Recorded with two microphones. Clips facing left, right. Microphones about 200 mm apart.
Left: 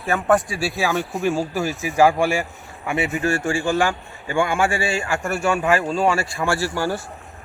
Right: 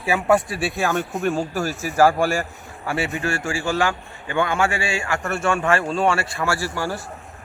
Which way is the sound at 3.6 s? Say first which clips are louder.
Left 2 dB; 15° left (ahead or behind).